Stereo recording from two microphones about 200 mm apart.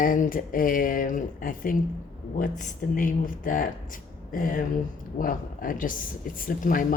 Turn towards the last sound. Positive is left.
turn(degrees=40)  # may be behind; listen again after turning